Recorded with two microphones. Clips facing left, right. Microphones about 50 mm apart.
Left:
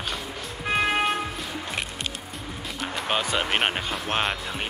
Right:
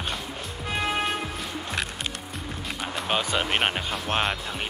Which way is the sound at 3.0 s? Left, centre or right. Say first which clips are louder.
Even; centre.